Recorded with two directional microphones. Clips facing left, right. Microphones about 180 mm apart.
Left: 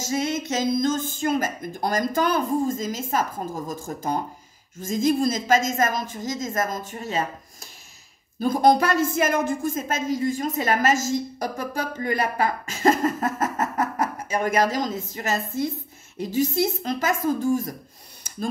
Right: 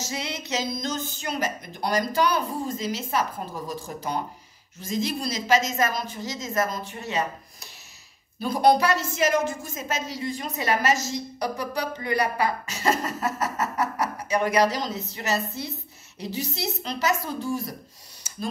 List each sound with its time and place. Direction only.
0.0 s a woman's voice: 45° left (ahead or behind)
8.4 s a woman's voice: 45° left (ahead or behind)